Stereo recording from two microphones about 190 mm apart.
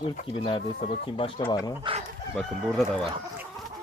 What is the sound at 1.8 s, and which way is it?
Speech, 30° right (ahead or behind).